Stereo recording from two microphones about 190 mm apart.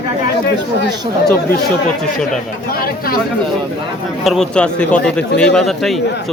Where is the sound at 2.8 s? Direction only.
50° left (ahead or behind).